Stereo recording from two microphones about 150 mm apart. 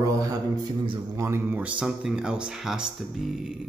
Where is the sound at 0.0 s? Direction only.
20° right (ahead or behind).